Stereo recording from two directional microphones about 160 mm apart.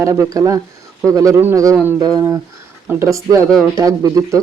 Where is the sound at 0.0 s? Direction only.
20° right (ahead or behind).